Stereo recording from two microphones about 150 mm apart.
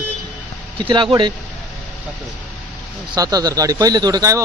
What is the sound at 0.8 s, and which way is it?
Speech, 30° right (ahead or behind).